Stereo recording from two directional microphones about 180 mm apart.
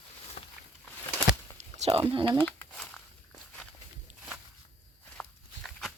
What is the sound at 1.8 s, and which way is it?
Speech, 30° right (ahead or behind).